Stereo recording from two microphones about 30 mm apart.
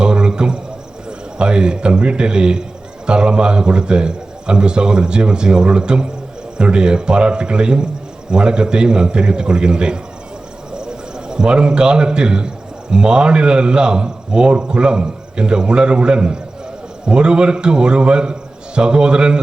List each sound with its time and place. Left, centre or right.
0.0 s cricket: right
1.4 s a man's voice: right